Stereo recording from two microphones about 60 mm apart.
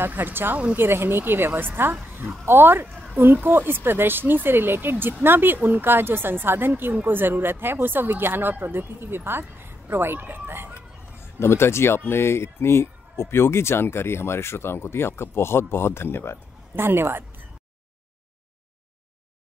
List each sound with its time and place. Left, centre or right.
0.0 s speech: right
11.3 s speech: left
16.7 s speech: right